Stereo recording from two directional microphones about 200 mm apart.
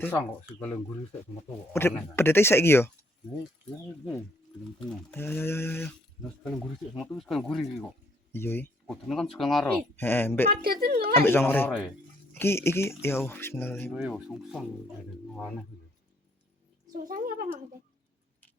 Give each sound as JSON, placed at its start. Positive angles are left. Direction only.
{"t": 0.0, "sound": "speech", "side_deg": 10}
{"t": 5.1, "sound": "speech", "side_deg": 10}
{"t": 6.9, "sound": "speech", "side_deg": 0}
{"t": 10.5, "sound": "speech", "side_deg": -50}
{"t": 11.1, "sound": "speech", "side_deg": 10}
{"t": 11.7, "sound": "speech", "side_deg": -5}
{"t": 12.3, "sound": "speech", "side_deg": 10}
{"t": 13.9, "sound": "speech", "side_deg": 0}
{"t": 16.9, "sound": "speech", "side_deg": -45}